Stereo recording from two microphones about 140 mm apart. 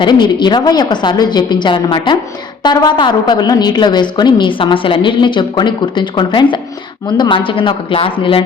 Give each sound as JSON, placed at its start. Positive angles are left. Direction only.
{"t": 0.0, "sound": "a woman's voice", "side_deg": 35}